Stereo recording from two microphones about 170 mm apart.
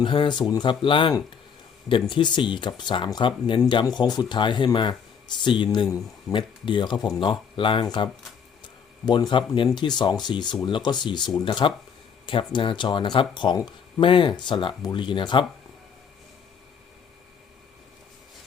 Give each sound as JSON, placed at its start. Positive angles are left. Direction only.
{"t": 0.0, "sound": "speech", "side_deg": 30}